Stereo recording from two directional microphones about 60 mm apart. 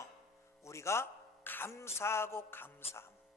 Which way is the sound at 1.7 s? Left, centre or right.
Left.